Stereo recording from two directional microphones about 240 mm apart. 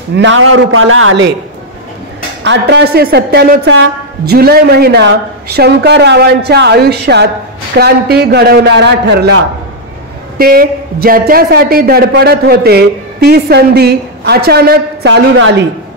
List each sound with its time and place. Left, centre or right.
0.1 s a woman's voice: right
2.4 s a woman's voice: right
10.3 s a man's voice: right